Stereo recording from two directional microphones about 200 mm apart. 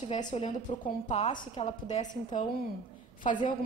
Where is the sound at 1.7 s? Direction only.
35° left (ahead or behind).